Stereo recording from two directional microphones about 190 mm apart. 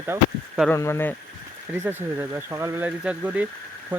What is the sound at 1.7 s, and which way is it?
Speech, 10° right (ahead or behind).